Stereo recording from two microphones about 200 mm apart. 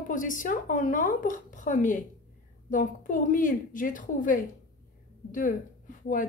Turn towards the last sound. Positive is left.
turn(degrees=40)  # may be behind; listen again after turning